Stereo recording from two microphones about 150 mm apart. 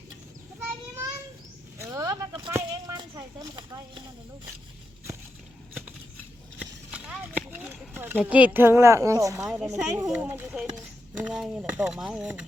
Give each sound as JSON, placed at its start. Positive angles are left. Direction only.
{"t": 1.8, "sound": "a sound", "side_deg": -20}
{"t": 2.5, "sound": "speech", "side_deg": -20}
{"t": 6.9, "sound": "speech", "side_deg": -5}
{"t": 9.4, "sound": "speech", "side_deg": -5}
{"t": 9.7, "sound": "speech", "side_deg": -20}
{"t": 10.1, "sound": "speech", "side_deg": -10}